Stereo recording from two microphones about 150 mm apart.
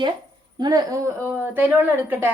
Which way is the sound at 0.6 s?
25° right (ahead or behind).